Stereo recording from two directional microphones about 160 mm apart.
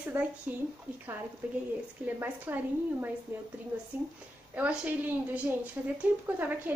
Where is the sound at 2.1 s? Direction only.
15° right (ahead or behind).